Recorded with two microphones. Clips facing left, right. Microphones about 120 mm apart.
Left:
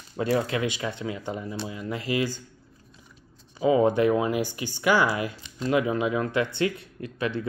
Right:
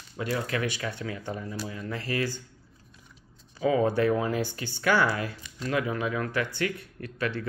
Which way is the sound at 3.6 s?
20° left (ahead or behind).